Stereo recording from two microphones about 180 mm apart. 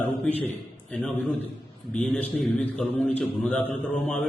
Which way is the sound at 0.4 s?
5° left (ahead or behind).